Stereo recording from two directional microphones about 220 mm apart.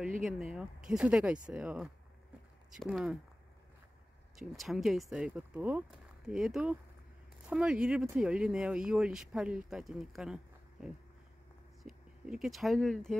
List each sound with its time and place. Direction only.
0.3 s speech: centre (ahead or behind)
4.4 s speech: centre (ahead or behind)